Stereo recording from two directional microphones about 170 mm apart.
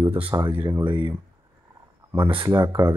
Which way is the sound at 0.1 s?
30° right (ahead or behind).